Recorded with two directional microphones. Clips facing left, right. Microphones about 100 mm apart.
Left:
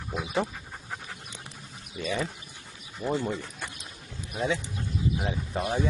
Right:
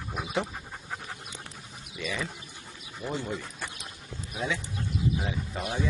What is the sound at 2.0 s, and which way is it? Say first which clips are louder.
Speech: left 4 dB; 40° left (ahead or behind).